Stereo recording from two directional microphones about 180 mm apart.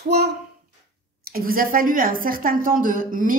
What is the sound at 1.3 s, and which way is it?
A woman's voice, 50° right (ahead or behind).